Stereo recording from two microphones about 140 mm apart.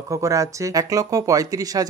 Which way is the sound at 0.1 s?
25° right (ahead or behind).